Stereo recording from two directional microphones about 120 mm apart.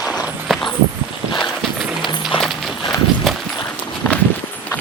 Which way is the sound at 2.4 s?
Centre (ahead or behind).